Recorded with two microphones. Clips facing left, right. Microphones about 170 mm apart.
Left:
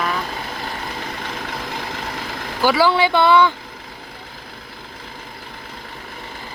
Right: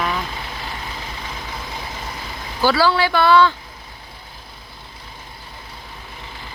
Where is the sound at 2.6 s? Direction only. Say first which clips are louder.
Left 1 dB; 15° left (ahead or behind).